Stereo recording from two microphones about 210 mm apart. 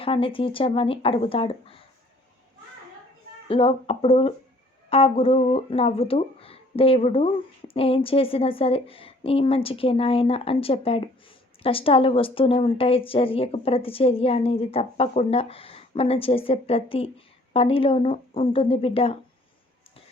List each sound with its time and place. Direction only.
0.0 s a woman's voice: 25° left (ahead or behind)
3.5 s a woman's voice: 25° left (ahead or behind)